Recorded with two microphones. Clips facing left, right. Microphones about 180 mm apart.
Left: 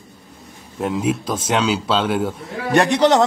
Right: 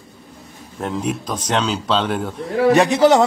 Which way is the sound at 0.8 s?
5° left (ahead or behind).